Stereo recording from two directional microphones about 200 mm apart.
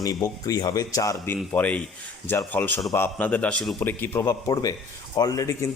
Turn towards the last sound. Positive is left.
turn(degrees=15)  # may be behind; listen again after turning